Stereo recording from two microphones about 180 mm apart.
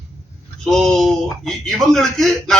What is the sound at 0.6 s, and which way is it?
A man's voice, centre (ahead or behind).